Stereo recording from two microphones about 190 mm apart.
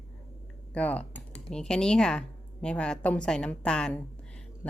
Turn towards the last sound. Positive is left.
turn(degrees=5)  # may be behind; listen again after turning